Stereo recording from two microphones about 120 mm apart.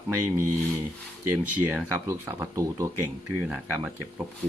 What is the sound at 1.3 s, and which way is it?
Speech, 15° right (ahead or behind).